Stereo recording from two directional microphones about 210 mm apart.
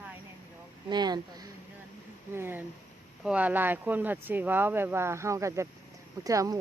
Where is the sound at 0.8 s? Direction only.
20° right (ahead or behind).